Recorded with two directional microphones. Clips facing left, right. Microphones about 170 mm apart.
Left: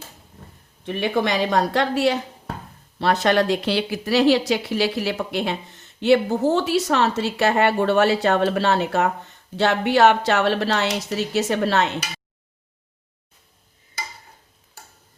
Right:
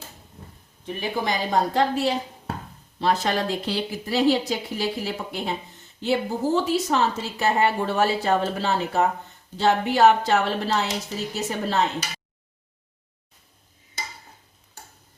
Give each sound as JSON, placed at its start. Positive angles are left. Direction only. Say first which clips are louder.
{"t": 0.9, "sound": "speech", "louder": "left 5 dB", "side_deg": 70}